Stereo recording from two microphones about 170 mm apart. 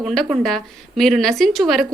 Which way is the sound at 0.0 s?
Centre (ahead or behind).